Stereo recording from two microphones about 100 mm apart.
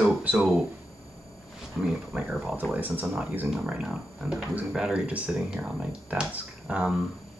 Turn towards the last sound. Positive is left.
turn(degrees=-10)  # may be behind; listen again after turning